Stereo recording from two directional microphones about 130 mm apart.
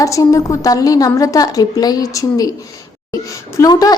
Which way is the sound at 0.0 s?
25° left (ahead or behind).